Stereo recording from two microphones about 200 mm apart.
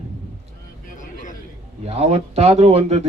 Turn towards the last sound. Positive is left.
turn(degrees=-30)  # may be behind; listen again after turning